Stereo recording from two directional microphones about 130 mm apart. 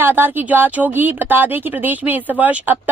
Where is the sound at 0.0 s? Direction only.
15° right (ahead or behind).